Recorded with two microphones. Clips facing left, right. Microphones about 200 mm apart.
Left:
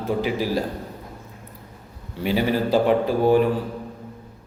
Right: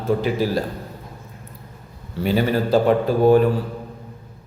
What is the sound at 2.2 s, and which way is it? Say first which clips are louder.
Mantra: right 2 dB; 10° left (ahead or behind).